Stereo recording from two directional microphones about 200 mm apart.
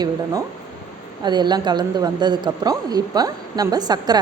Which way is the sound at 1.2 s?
20° right (ahead or behind).